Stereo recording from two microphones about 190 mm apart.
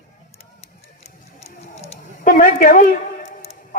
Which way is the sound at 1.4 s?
35° left (ahead or behind).